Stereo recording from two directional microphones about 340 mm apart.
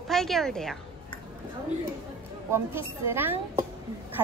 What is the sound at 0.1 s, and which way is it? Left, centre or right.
Speech, centre.